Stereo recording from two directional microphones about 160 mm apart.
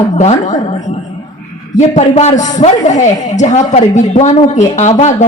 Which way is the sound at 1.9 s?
40° left (ahead or behind).